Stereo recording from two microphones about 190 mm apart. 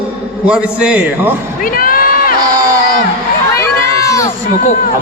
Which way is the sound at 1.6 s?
50° left (ahead or behind).